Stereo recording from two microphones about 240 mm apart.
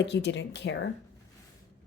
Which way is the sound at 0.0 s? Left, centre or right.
Left.